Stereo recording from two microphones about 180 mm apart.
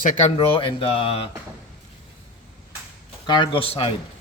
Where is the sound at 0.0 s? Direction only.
45° left (ahead or behind).